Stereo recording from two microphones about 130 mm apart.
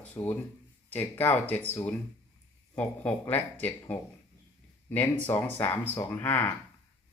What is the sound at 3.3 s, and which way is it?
Speech, 15° left (ahead or behind).